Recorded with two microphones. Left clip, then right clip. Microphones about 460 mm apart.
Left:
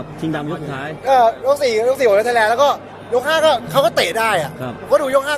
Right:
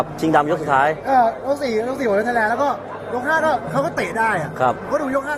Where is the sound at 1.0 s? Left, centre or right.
Left.